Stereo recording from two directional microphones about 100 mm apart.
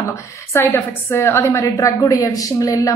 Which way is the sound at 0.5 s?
25° left (ahead or behind).